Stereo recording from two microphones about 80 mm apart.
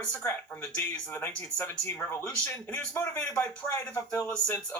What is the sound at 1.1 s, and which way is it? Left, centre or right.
Speech, left.